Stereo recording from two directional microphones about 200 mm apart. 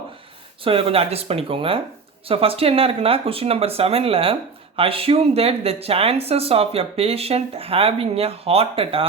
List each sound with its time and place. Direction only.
0.6 s speech: 30° right (ahead or behind)